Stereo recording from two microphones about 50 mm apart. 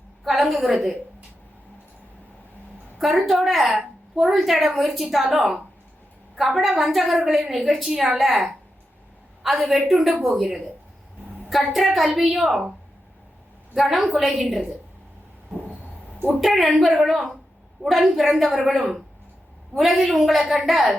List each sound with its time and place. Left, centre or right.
0.3 s a woman's voice: centre
3.0 s a woman's voice: centre
13.7 s a woman's voice: centre
16.4 s a woman's voice: centre